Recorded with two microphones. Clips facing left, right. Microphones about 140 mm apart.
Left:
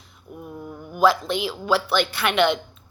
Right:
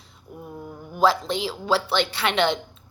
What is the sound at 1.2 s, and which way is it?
A woman's voice, 35° right (ahead or behind).